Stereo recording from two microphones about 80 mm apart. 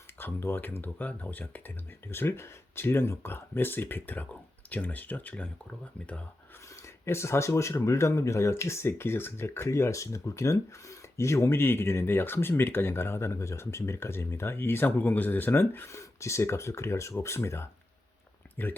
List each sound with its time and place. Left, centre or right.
0.2 s speech: left
6.7 s speech: left
18.5 s speech: left